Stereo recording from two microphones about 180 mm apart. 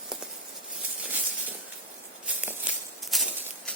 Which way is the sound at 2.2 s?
10° right (ahead or behind).